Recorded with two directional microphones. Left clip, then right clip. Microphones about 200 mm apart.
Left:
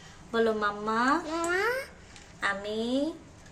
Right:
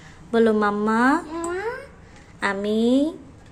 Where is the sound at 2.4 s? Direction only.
40° right (ahead or behind).